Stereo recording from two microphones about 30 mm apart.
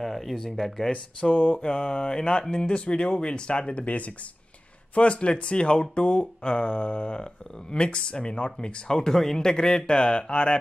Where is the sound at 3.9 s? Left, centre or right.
Left.